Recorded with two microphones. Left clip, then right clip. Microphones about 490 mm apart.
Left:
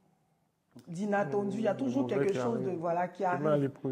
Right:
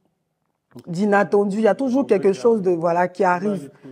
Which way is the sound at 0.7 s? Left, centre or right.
Right.